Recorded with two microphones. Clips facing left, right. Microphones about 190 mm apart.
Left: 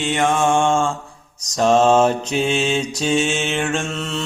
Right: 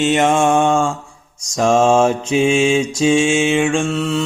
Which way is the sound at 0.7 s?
Centre (ahead or behind).